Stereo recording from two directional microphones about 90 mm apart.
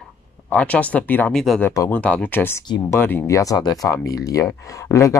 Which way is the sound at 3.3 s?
40° left (ahead or behind).